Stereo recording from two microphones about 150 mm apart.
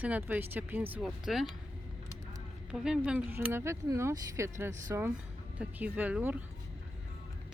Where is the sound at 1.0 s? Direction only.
Centre (ahead or behind).